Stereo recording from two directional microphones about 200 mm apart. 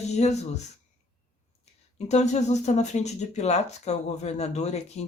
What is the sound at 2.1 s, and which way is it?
Speech, 35° left (ahead or behind).